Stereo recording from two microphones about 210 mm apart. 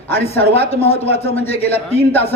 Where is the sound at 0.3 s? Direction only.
30° left (ahead or behind).